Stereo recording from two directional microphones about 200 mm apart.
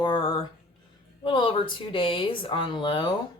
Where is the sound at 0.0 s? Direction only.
25° left (ahead or behind).